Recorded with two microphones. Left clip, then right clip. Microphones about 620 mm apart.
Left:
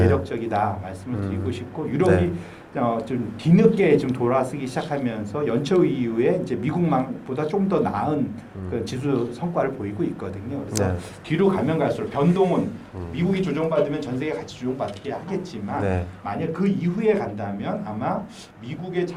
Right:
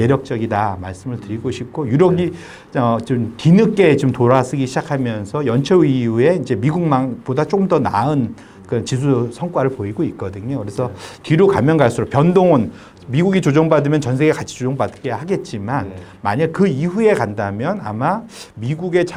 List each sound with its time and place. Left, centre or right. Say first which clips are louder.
0.0 s speech: right 4 dB; right
11.3 s speech: right 8 dB; right
13.1 s speech: right 10 dB; right